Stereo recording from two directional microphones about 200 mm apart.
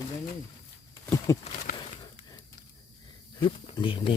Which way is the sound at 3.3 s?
25° left (ahead or behind).